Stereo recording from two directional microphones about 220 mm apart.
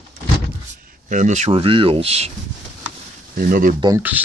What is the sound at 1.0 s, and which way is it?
Speech, 35° right (ahead or behind).